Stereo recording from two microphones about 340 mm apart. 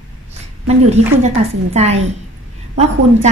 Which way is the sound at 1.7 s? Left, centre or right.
Centre.